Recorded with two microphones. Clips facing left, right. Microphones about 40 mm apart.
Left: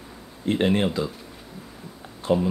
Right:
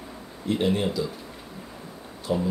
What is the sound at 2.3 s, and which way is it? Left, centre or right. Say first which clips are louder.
Speech: left 4 dB; left.